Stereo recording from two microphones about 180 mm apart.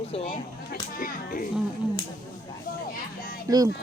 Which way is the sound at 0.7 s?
55° left (ahead or behind).